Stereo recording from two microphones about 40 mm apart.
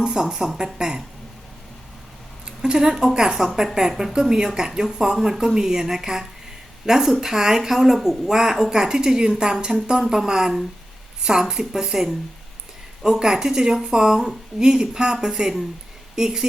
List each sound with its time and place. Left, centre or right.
0.0 s a woman's voice: centre
2.6 s a woman's voice: centre